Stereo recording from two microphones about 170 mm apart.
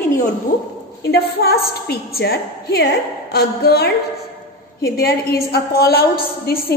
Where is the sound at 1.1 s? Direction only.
65° left (ahead or behind).